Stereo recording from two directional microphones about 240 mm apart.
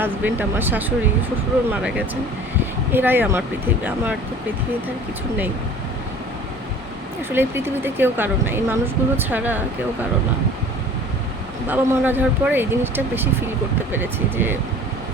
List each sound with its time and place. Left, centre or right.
0.0 s speech: centre
7.3 s speech: centre
11.7 s speech: centre